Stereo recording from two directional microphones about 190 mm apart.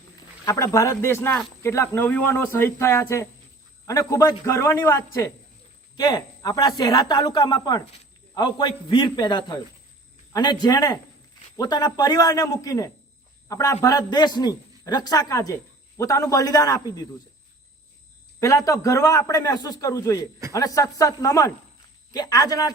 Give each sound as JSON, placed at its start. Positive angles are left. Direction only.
{"t": 0.4, "sound": "a man's voice", "side_deg": 15}
{"t": 18.3, "sound": "a man's voice", "side_deg": 15}